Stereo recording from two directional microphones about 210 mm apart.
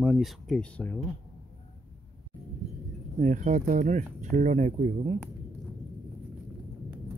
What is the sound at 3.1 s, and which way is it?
Speech, 35° right (ahead or behind).